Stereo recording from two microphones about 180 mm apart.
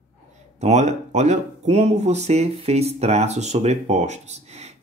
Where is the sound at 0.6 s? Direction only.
40° right (ahead or behind).